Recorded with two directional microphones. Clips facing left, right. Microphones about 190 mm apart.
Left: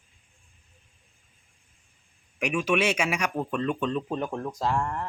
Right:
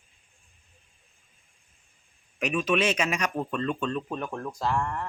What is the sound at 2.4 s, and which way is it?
Speech, 10° left (ahead or behind).